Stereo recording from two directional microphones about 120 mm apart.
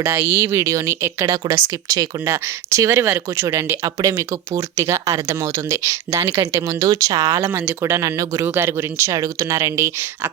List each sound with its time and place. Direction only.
0.0 s speech: 20° right (ahead or behind)